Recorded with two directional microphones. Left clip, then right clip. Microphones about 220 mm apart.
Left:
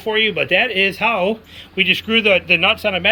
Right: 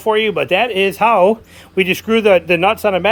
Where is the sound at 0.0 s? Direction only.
10° right (ahead or behind).